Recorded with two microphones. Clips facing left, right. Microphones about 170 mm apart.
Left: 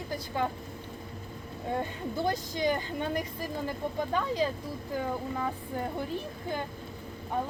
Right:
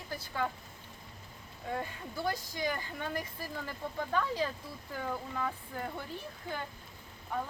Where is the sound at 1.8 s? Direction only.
20° left (ahead or behind).